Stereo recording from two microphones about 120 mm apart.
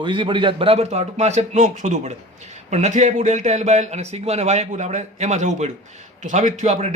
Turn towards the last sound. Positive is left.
turn(degrees=-75)  # may be behind; listen again after turning